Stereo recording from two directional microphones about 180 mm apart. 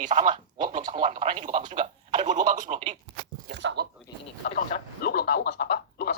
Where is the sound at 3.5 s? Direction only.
65° right (ahead or behind).